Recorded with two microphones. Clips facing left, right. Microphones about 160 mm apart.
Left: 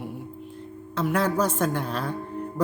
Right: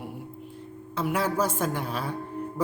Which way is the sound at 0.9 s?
10° right (ahead or behind).